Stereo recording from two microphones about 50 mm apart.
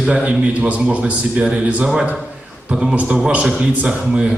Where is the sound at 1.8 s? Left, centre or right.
Centre.